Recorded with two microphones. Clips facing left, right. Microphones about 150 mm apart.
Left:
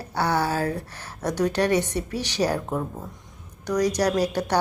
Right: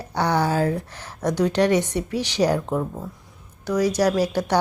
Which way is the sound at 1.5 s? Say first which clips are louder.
Right 3 dB; 15° right (ahead or behind).